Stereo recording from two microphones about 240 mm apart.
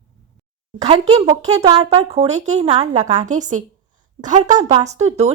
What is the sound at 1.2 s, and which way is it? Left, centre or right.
A woman's voice, right.